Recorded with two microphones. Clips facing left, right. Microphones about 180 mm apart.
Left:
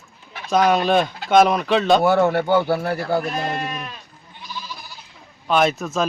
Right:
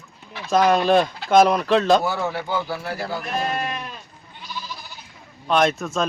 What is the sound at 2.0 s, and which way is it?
Speech, 60° left (ahead or behind).